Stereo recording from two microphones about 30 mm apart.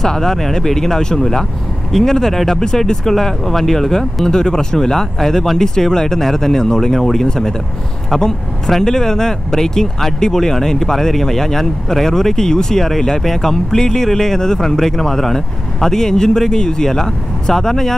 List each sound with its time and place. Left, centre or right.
0.0 s speech: centre
4.3 s speech: left
4.7 s speech: centre